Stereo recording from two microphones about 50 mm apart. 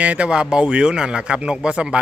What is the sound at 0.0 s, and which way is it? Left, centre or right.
Speech, right.